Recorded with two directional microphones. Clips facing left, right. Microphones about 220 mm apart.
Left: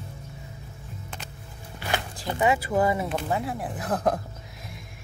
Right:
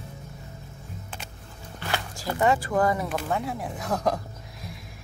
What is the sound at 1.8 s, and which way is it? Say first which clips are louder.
Music: left 1 dB; 15° left (ahead or behind).